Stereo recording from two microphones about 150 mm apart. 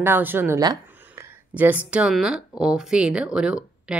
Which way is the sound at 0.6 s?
20° right (ahead or behind).